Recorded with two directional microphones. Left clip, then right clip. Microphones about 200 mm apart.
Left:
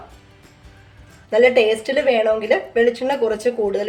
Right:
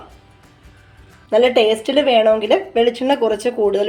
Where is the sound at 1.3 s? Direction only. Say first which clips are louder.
Right 1 dB; 25° right (ahead or behind).